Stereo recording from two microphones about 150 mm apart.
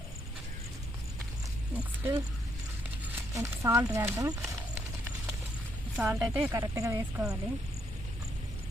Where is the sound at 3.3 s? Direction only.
20° right (ahead or behind).